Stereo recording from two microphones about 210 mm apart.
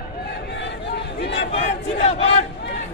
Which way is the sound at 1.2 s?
55° left (ahead or behind).